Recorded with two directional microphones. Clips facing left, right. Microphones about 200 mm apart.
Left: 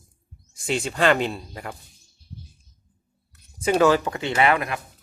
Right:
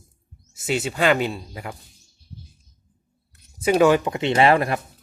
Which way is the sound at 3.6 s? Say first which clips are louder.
Right 2 dB; 10° right (ahead or behind).